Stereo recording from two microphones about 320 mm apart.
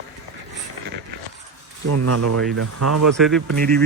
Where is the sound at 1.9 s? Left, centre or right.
Right.